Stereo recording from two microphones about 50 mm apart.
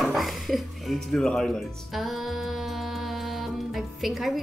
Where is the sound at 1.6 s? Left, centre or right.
Centre.